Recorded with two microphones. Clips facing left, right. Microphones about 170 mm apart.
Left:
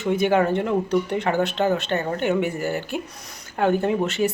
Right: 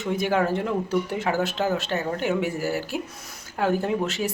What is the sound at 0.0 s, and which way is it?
Speech, centre (ahead or behind).